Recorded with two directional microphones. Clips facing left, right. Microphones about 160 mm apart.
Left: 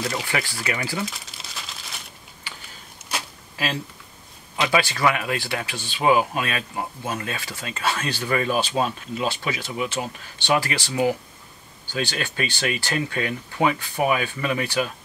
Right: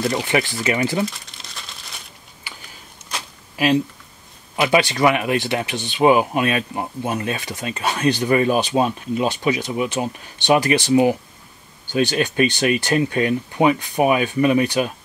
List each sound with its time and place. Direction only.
0.1 s speech: 20° right (ahead or behind)
1.1 s crumpling: centre (ahead or behind)
4.6 s speech: 20° right (ahead or behind)